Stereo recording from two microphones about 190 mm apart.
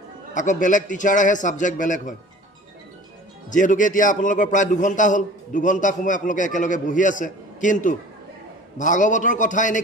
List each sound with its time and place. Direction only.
0.3 s a man's voice: 40° left (ahead or behind)
3.4 s a man's voice: 45° left (ahead or behind)